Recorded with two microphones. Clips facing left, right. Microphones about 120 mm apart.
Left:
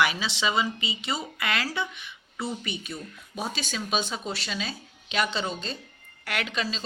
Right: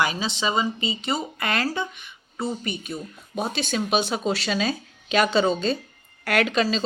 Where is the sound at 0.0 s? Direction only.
40° right (ahead or behind).